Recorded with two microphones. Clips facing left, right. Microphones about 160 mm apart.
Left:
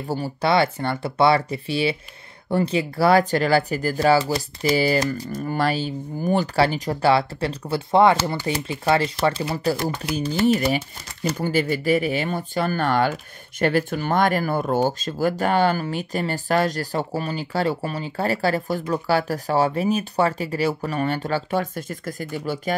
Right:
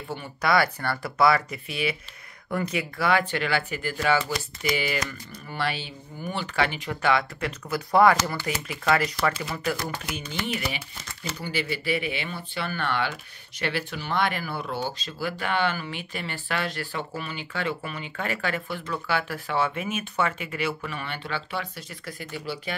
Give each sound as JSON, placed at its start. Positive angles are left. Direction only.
{"t": 0.1, "sound": "speech", "side_deg": 30}